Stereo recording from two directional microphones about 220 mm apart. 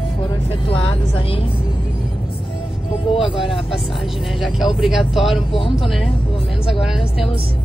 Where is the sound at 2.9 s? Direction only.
25° left (ahead or behind).